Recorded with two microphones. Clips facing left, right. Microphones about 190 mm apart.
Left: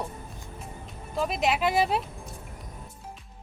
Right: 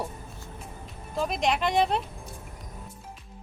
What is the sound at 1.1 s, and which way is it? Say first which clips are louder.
Speech: even; centre (ahead or behind).